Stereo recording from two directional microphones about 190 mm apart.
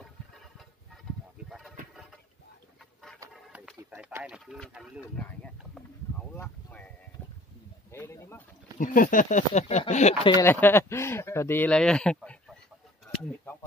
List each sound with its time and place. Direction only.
3.3 s a sound: centre (ahead or behind)
3.7 s speech: 10° right (ahead or behind)
6.3 s speech: 10° left (ahead or behind)
7.9 s speech: 15° left (ahead or behind)
8.7 s speech: 45° left (ahead or behind)
10.3 s speech: 10° left (ahead or behind)
13.1 s a sound: 5° left (ahead or behind)